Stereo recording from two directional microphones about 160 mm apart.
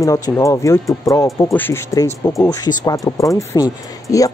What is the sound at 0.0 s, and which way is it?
Speech, 20° left (ahead or behind).